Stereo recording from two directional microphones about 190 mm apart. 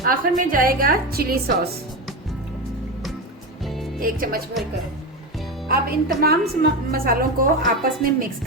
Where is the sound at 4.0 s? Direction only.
50° right (ahead or behind).